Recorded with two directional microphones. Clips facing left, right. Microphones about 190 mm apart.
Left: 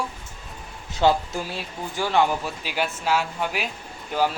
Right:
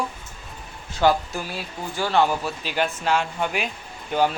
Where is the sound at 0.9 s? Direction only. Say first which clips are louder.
Even; 25° left (ahead or behind).